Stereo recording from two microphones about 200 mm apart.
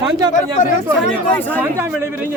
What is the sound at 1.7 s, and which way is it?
Speech, 10° right (ahead or behind).